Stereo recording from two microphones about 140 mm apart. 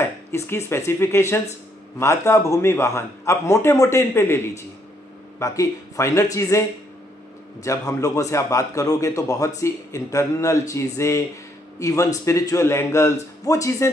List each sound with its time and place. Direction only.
0.0 s a man's voice: 20° left (ahead or behind)
5.4 s a man's voice: 20° left (ahead or behind)